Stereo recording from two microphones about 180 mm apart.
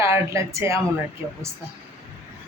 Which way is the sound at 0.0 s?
15° right (ahead or behind).